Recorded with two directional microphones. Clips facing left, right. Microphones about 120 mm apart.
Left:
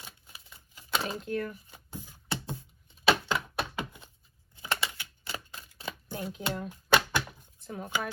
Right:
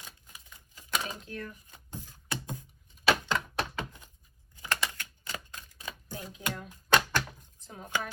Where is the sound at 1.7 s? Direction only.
10° left (ahead or behind).